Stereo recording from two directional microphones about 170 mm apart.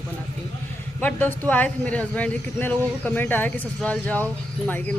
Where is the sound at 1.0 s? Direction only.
10° left (ahead or behind).